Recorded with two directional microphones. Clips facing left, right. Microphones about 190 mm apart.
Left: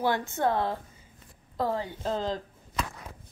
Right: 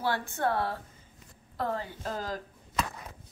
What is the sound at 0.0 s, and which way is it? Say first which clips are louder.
Speech: left 3 dB; 20° left (ahead or behind).